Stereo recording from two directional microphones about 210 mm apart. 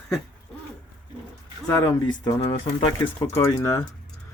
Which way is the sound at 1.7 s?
15° left (ahead or behind).